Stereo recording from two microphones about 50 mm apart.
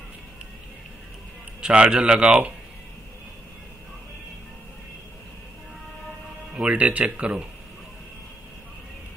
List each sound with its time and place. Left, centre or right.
1.6 s speech: right
6.5 s speech: right